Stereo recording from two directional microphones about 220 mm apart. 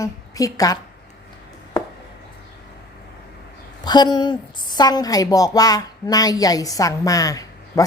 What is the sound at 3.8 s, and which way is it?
A woman's voice, 20° left (ahead or behind).